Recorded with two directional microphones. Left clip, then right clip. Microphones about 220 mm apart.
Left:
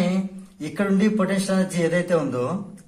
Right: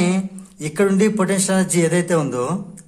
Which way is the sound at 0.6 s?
40° right (ahead or behind).